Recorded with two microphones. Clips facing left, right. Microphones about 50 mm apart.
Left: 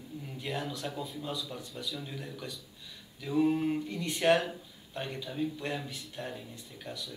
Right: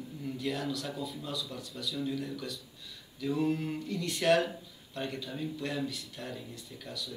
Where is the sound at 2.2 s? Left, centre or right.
Left.